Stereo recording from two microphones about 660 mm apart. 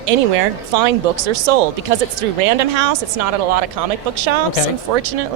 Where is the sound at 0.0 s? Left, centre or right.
Right.